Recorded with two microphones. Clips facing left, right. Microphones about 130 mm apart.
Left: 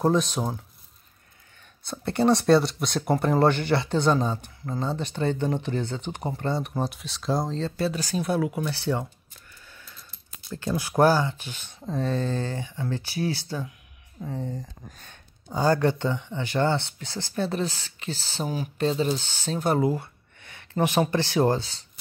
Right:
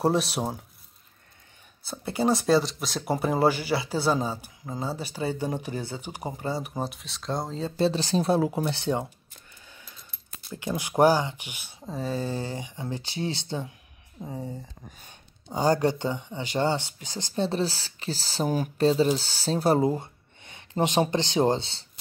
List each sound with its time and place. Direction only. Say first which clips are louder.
0.0 s speech: left 1 dB; 5° right (ahead or behind)
1.9 s speech: left 3 dB; 5° right (ahead or behind)
7.7 s speech: right 3 dB; 25° right (ahead or behind)
9.7 s coin: left 1 dB; 15° right (ahead or behind)
10.5 s speech: left 2 dB; 15° right (ahead or behind)
14.2 s a sound: left 3 dB; 10° right (ahead or behind)
15.5 s speech: left 1 dB; 15° right (ahead or behind)
17.5 s speech: right 1 dB; 35° right (ahead or behind)